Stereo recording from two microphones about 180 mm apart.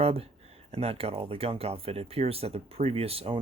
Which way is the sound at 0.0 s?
35° right (ahead or behind).